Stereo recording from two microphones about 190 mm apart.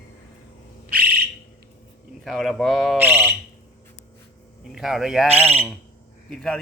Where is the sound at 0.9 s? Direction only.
50° right (ahead or behind).